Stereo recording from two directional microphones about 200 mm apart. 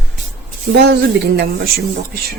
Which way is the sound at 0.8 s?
55° right (ahead or behind).